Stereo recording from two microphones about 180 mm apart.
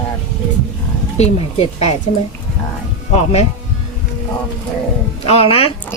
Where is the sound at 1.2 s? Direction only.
35° left (ahead or behind).